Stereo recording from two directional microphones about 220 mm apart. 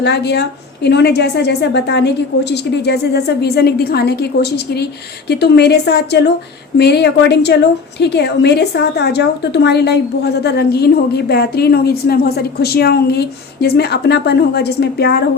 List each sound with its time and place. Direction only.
0.0 s a woman's voice: 50° left (ahead or behind)